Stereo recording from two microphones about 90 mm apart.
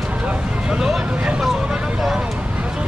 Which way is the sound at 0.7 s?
10° right (ahead or behind).